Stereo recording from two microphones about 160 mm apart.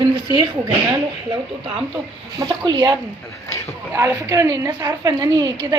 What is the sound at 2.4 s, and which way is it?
Speech, 30° right (ahead or behind).